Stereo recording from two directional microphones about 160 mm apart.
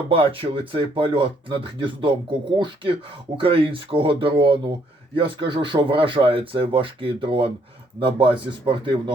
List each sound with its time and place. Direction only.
0.1 s speech: 35° right (ahead or behind)
3.3 s speech: 35° right (ahead or behind)